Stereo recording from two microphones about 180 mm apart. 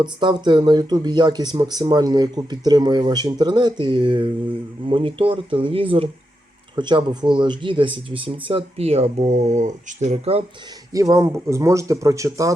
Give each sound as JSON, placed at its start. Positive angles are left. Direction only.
{"t": 0.0, "sound": "speech", "side_deg": -25}
{"t": 10.9, "sound": "speech", "side_deg": -20}